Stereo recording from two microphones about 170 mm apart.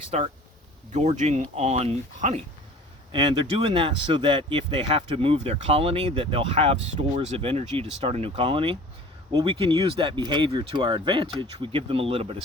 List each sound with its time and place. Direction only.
0.1 s speech: 40° right (ahead or behind)